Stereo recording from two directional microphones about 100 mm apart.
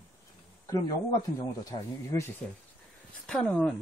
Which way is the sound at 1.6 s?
30° left (ahead or behind).